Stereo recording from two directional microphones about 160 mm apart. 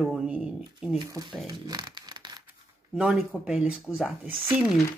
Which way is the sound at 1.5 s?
25° right (ahead or behind).